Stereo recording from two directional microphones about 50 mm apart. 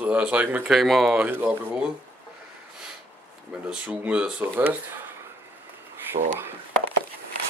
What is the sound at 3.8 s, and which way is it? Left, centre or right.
Speech, right.